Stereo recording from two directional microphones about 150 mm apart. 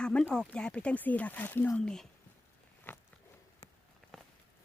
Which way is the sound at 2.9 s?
15° left (ahead or behind).